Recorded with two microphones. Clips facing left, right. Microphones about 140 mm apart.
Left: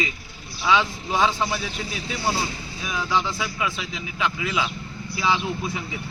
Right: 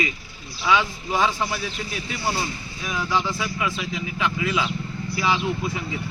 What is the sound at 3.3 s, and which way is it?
A man's voice, 15° left (ahead or behind).